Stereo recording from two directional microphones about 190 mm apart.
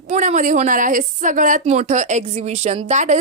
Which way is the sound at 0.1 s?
40° right (ahead or behind).